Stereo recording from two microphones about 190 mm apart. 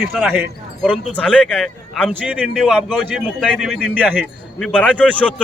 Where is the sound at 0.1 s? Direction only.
Centre (ahead or behind).